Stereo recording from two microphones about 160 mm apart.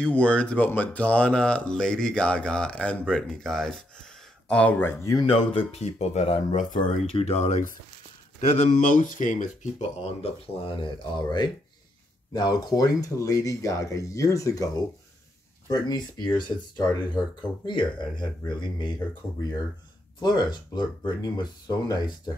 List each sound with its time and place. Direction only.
0.0 s speech: 5° left (ahead or behind)
5.2 s speech: 35° left (ahead or behind)
15.7 s speech: 25° left (ahead or behind)
20.2 s speech: 25° left (ahead or behind)